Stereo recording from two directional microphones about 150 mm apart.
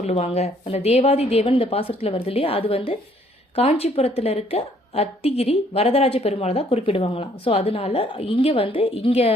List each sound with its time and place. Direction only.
0.0 s a woman's voice: 45° left (ahead or behind)